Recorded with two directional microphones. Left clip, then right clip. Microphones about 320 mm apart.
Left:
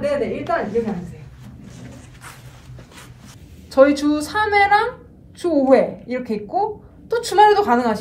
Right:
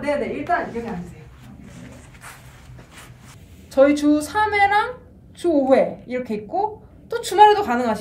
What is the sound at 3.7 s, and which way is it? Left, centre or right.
A woman's voice, centre.